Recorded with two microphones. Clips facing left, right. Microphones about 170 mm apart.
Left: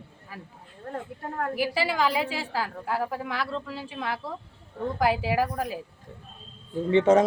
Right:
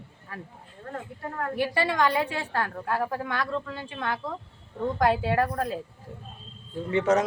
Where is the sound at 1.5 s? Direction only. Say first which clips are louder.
Right 2 dB; 5° left (ahead or behind).